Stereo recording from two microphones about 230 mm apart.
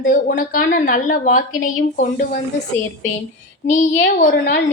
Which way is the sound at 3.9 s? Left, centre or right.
Left.